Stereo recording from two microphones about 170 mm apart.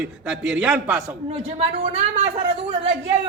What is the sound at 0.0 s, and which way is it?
A man's voice, 5° right (ahead or behind).